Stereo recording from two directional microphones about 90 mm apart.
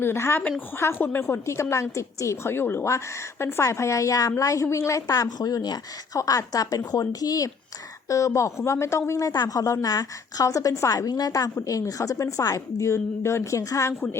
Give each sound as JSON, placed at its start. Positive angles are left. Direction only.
{"t": 0.0, "sound": "a woman's voice", "side_deg": 25}